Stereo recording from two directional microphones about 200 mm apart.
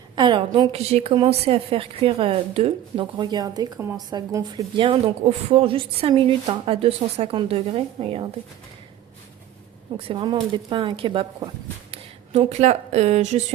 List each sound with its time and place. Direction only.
0.2 s a woman's voice: 25° right (ahead or behind)
10.1 s a woman's voice: 25° right (ahead or behind)